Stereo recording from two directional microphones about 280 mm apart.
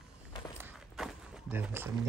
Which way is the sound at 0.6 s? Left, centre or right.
Centre.